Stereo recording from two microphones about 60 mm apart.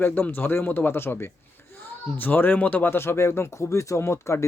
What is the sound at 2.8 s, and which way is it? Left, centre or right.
Speech, left.